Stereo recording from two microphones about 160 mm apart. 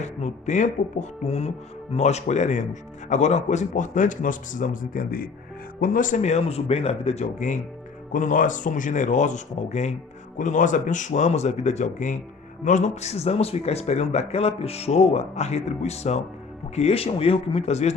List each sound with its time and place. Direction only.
0.0 s speech: 45° left (ahead or behind)